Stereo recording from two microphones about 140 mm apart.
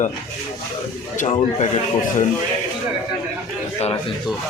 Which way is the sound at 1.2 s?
50° left (ahead or behind).